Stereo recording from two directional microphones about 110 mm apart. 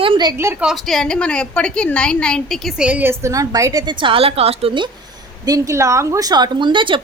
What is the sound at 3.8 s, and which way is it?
Speech, 50° right (ahead or behind).